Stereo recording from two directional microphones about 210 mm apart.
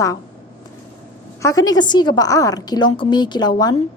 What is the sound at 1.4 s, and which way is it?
A woman's voice, 15° left (ahead or behind).